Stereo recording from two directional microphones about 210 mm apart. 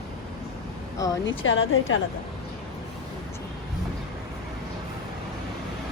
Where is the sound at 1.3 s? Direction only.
65° left (ahead or behind).